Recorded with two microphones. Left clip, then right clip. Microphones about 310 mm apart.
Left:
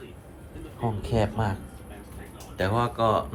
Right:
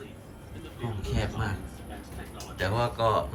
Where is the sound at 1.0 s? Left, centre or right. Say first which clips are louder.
Left 6 dB; centre.